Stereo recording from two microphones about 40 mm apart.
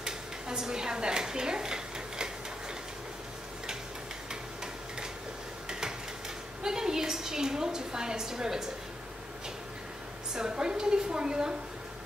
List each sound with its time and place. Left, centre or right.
0.0 s dishes: centre
5.7 s a sound: centre
6.6 s a woman's voice: centre
10.3 s a woman's voice: centre